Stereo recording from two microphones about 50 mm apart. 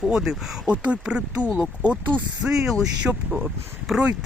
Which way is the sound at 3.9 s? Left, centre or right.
Centre.